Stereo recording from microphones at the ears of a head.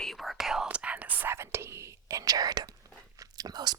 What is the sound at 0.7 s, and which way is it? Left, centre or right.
Speech, right.